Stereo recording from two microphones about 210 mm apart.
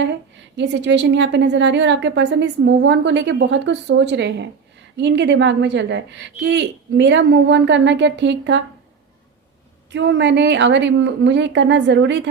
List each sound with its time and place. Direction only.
0.0 s a woman's voice: 60° right (ahead or behind)
9.9 s a woman's voice: 55° right (ahead or behind)